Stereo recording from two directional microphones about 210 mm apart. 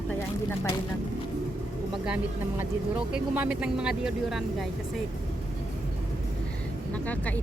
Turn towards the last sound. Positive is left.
turn(degrees=5)  # may be behind; listen again after turning